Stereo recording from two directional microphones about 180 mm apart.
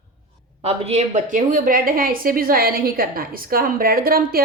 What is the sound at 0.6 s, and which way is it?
A woman's voice, 35° right (ahead or behind).